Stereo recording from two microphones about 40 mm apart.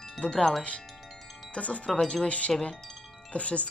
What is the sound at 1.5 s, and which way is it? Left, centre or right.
Wind chime, left.